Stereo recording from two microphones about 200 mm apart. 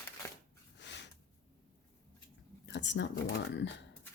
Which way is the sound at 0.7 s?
60° left (ahead or behind).